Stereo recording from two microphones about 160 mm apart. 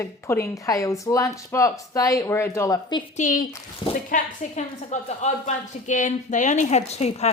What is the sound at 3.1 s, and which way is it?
A woman's voice, 55° left (ahead or behind).